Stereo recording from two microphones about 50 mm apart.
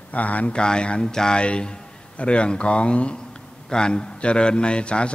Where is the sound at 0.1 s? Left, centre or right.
Left.